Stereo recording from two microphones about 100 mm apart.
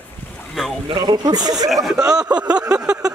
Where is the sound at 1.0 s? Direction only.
45° right (ahead or behind).